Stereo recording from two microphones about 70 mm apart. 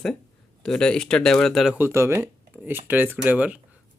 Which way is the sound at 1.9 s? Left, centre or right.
Right.